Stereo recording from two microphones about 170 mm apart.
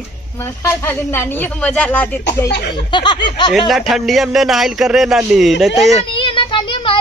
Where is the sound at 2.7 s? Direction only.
25° left (ahead or behind).